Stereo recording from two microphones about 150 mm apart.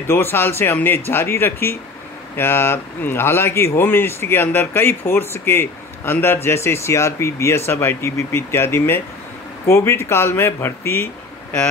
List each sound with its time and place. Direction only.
0.1 s speech: 15° left (ahead or behind)